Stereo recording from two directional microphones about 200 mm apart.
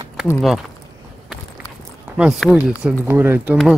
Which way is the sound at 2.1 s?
5° right (ahead or behind).